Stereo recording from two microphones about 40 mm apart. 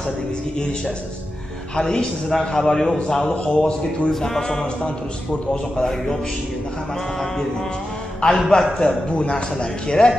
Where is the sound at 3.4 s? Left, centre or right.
Left.